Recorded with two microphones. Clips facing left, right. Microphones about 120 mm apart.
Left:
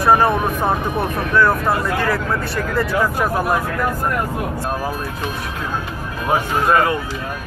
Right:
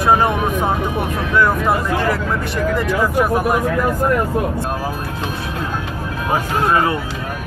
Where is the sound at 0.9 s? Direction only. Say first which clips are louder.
Left 1 dB; 15° right (ahead or behind).